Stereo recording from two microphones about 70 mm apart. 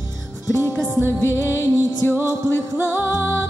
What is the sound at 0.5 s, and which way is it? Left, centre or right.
Music, right.